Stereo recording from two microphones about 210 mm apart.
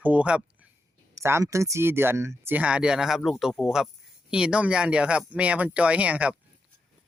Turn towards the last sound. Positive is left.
turn(degrees=-5)  # may be behind; listen again after turning